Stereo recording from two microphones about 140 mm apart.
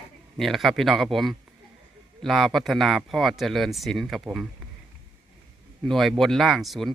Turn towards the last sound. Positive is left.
turn(degrees=0)  # may be behind; listen again after turning